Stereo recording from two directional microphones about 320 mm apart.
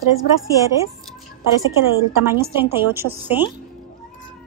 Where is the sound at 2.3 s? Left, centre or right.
Centre.